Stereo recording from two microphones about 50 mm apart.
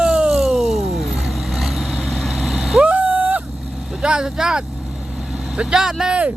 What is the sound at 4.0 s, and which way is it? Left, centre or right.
Vehicle, centre.